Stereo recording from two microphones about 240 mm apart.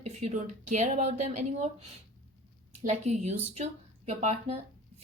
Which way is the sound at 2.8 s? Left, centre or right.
Right.